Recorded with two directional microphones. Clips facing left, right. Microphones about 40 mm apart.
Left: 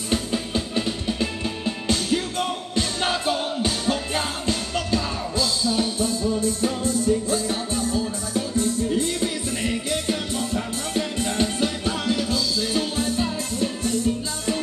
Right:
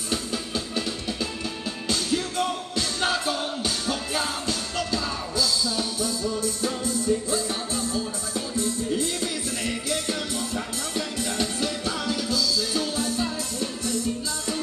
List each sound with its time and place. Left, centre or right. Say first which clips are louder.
0.1 s music: left 4 dB; left